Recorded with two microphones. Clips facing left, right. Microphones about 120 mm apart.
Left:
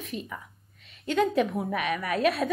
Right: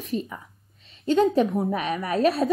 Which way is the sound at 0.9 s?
30° right (ahead or behind).